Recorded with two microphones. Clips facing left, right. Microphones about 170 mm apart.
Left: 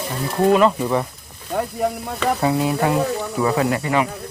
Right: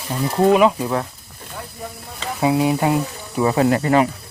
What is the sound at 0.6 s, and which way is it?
Speech, 5° right (ahead or behind).